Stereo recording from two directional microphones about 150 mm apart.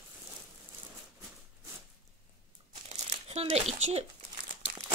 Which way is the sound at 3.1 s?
45° right (ahead or behind).